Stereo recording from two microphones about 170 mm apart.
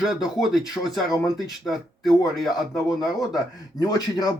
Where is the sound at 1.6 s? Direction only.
Centre (ahead or behind).